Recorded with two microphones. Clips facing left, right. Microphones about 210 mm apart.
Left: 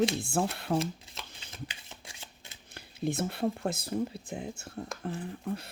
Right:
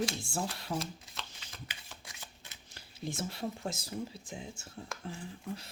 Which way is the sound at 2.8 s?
60° left (ahead or behind).